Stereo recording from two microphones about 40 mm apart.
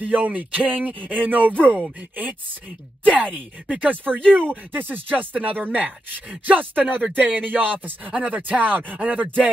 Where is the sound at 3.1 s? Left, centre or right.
Right.